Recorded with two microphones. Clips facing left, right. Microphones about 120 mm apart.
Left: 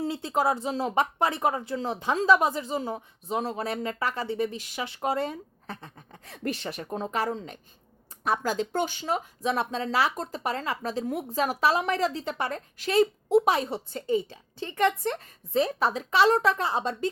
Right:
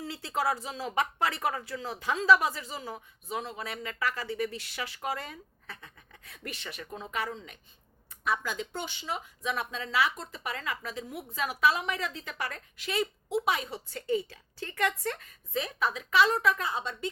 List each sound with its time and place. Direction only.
0.0 s speech: 20° left (ahead or behind)
3.4 s a woman's voice: 40° left (ahead or behind); by 15.2 s 25° left (ahead or behind)
15.2 s a woman's voice: 35° left (ahead or behind)